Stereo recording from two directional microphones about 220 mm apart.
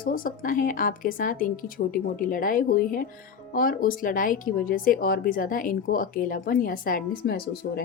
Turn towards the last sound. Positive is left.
turn(degrees=45)  # may be behind; listen again after turning